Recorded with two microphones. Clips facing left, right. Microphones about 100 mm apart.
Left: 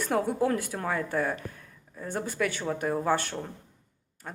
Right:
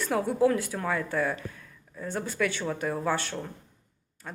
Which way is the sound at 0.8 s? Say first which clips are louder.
Even; 35° left (ahead or behind).